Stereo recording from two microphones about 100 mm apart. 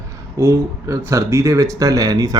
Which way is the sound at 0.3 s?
30° right (ahead or behind).